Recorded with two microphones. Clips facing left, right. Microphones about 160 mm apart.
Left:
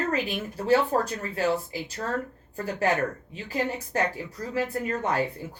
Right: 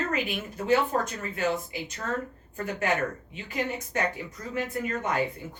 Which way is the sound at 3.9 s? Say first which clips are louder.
Left 2 dB; 35° left (ahead or behind).